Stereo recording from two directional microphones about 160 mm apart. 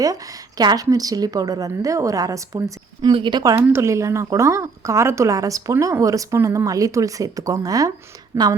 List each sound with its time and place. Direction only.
0.0 s a woman's voice: 25° right (ahead or behind)